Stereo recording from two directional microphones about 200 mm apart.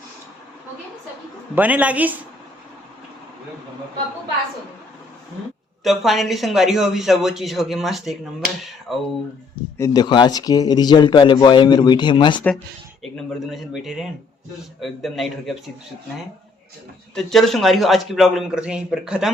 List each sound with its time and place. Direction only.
1.5 s a man's voice: 5° right (ahead or behind)
5.8 s speech: centre (ahead or behind)
9.7 s a man's voice: 15° left (ahead or behind)
13.0 s speech: centre (ahead or behind)
17.2 s speech: centre (ahead or behind)